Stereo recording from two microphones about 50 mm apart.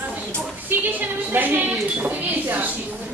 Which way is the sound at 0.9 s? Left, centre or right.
Right.